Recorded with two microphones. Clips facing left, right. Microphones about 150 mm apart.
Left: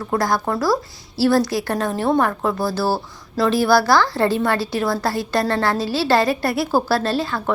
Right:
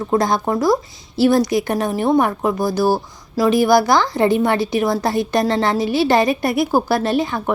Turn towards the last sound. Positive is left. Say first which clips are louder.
# right 3 dB
turn(degrees=-20)  # may be behind; listen again after turning